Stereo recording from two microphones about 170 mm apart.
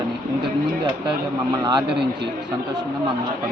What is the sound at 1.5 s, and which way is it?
Speech, 25° right (ahead or behind).